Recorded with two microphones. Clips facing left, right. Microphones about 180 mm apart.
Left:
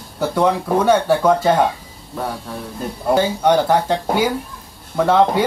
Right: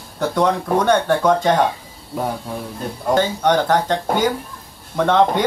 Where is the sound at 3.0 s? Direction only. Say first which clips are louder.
Left 1 dB; 10° left (ahead or behind).